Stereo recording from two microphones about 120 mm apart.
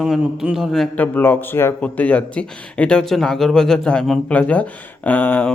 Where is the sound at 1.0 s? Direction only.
15° left (ahead or behind).